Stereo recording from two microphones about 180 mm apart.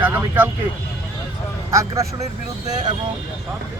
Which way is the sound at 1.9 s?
15° right (ahead or behind).